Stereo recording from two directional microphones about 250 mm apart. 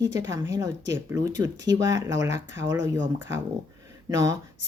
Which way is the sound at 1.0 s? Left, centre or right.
Centre.